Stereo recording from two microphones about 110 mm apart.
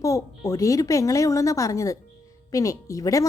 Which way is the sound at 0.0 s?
30° left (ahead or behind).